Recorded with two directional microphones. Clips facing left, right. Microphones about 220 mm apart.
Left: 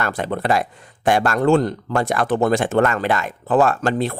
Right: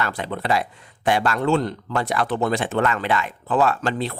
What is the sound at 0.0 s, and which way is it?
Speech, 50° left (ahead or behind).